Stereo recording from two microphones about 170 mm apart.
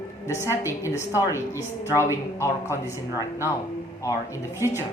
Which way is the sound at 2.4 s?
15° left (ahead or behind).